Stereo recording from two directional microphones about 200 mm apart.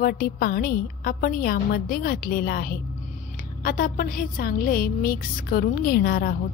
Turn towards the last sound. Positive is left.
turn(degrees=50)  # may be behind; listen again after turning